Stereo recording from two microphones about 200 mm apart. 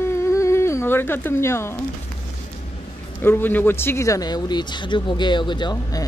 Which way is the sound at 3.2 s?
10° left (ahead or behind).